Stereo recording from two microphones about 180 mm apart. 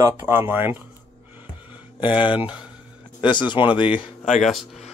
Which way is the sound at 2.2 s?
5° right (ahead or behind).